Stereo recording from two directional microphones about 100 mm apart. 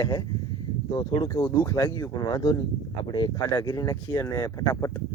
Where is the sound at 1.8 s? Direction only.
40° left (ahead or behind).